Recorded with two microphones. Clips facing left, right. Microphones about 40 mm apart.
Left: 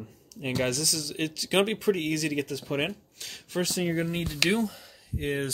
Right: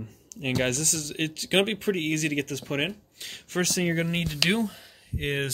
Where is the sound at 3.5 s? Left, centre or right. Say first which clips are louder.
Right 2 dB; right.